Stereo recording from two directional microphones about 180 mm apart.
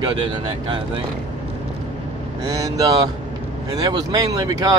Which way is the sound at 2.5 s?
20° right (ahead or behind).